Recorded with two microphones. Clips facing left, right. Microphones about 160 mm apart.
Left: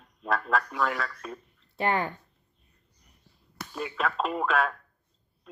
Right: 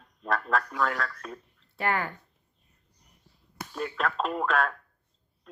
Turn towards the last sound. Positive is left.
turn(degrees=0)  # may be behind; listen again after turning